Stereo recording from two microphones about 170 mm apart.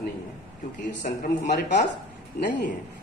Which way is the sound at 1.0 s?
55° left (ahead or behind).